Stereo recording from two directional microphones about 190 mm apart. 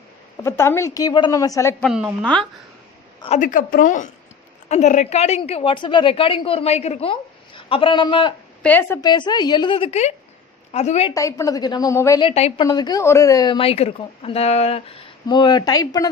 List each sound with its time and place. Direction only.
0.4 s a woman's voice: 15° left (ahead or behind)
1.8 s a woman's voice: 5° right (ahead or behind)
3.2 s a woman's voice: 35° left (ahead or behind)
8.6 s a woman's voice: 10° left (ahead or behind)
9.0 s a woman's voice: 25° left (ahead or behind)
11.1 s a woman's voice: 15° left (ahead or behind)
12.2 s a woman's voice: 35° left (ahead or behind)
12.6 s a woman's voice: 20° left (ahead or behind)